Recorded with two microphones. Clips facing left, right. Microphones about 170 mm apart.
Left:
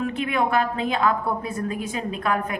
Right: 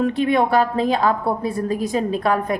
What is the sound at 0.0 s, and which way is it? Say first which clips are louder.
A woman's voice: right 6 dB; 35° right (ahead or behind).